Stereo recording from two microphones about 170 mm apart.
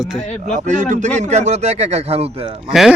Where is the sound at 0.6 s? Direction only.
45° right (ahead or behind).